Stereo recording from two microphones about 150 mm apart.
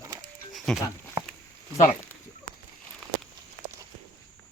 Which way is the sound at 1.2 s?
20° right (ahead or behind).